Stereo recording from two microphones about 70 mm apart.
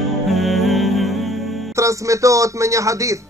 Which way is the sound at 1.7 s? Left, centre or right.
Right.